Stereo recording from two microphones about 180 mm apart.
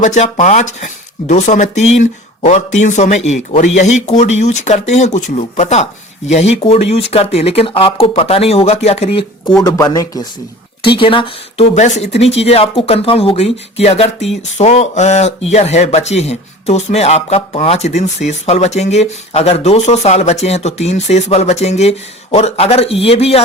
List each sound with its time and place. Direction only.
0.0 s speech: 40° left (ahead or behind)
9.6 s speech: 20° left (ahead or behind)